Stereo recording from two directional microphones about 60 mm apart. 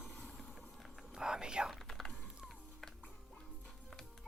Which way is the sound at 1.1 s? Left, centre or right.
Centre.